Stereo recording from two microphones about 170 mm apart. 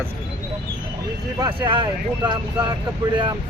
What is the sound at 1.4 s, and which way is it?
Speech, 25° right (ahead or behind).